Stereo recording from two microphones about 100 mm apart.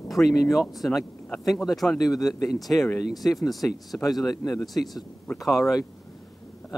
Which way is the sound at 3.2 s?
Centre (ahead or behind).